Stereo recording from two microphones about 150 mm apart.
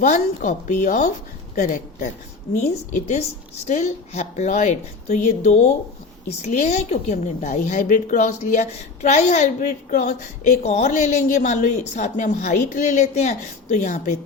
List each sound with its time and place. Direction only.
0.0 s a woman's voice: 60° left (ahead or behind)
3.7 s a woman's voice: 50° left (ahead or behind)